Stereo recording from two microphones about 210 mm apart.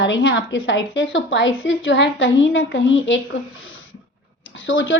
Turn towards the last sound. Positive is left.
turn(degrees=65)  # may be behind; listen again after turning